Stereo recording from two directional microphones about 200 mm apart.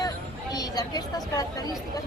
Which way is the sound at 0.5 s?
20° left (ahead or behind).